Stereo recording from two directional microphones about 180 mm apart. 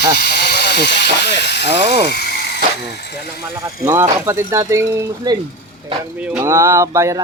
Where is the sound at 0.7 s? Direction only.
70° left (ahead or behind).